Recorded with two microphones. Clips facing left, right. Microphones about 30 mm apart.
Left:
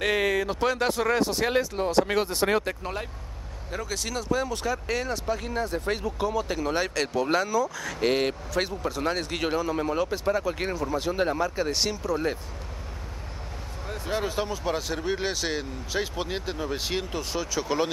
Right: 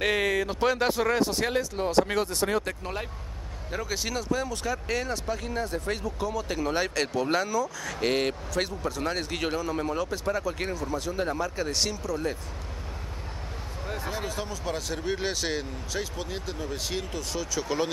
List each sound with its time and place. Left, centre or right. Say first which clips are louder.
0.0 s speech: left 1 dB; centre
3.7 s speech: even; centre
4.2 s speech: left 6 dB; centre
6.0 s speech: left 3 dB; centre
6.4 s speech: left 1 dB; centre
11.0 s speech: left 5 dB; left
14.0 s speech: left 7 dB; centre
15.9 s speech: left 5 dB; left